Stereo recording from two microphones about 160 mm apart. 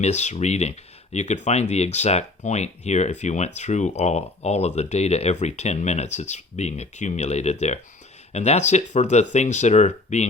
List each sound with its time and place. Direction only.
0.0 s speech: 45° left (ahead or behind)